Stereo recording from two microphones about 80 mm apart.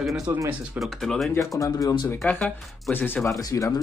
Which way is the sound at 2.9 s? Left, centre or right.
Left.